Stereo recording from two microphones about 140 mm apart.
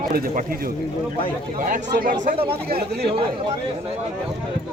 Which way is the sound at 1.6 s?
75° right (ahead or behind).